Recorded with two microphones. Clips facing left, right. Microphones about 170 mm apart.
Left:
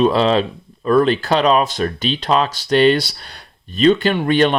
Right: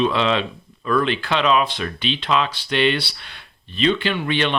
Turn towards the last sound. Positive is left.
turn(degrees=45)  # may be behind; listen again after turning